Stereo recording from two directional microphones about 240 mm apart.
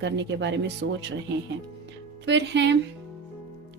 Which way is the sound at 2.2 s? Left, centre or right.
Right.